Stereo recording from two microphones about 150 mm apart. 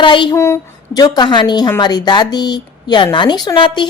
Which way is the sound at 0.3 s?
20° left (ahead or behind).